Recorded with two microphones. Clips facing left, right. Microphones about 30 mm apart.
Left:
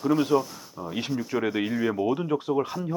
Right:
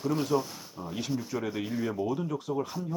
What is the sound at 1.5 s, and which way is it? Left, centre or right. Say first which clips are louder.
Speech: left 6 dB; left.